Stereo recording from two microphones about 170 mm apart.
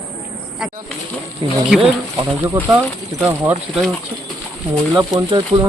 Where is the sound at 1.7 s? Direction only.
Centre (ahead or behind).